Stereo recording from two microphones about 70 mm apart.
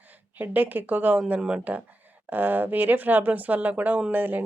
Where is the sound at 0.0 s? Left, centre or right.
Right.